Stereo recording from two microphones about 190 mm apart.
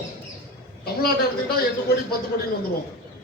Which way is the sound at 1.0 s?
55° left (ahead or behind).